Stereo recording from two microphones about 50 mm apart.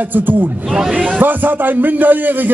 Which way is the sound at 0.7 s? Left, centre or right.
Centre.